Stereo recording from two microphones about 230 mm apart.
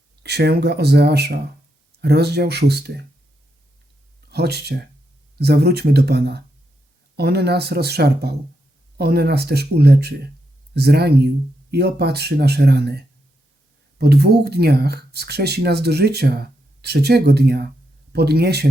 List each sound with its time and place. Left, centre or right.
0.2 s speech: right
4.3 s speech: right